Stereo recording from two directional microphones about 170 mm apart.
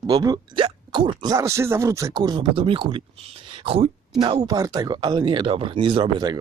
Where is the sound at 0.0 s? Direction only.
25° right (ahead or behind).